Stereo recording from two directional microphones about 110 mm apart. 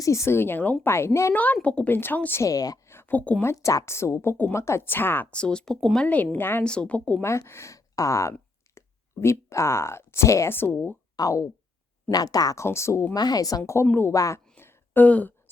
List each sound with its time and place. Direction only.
0.0 s speech: 25° left (ahead or behind)
1.6 s a woman's voice: 10° left (ahead or behind)
2.4 s speech: 35° left (ahead or behind)
2.9 s a sound: 20° left (ahead or behind)
3.4 s speech: 30° left (ahead or behind); by 6.1 s 5° left (ahead or behind)
6.3 s a woman's voice: 20° left (ahead or behind)
7.2 s speech: 25° left (ahead or behind)
11.2 s speech: 30° left (ahead or behind)
13.1 s a woman's voice: 35° left (ahead or behind); by 14.1 s 15° left (ahead or behind)
14.1 s speech: 30° left (ahead or behind)
14.6 s a sound: 20° left (ahead or behind)